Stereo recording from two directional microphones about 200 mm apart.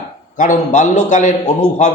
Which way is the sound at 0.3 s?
40° left (ahead or behind).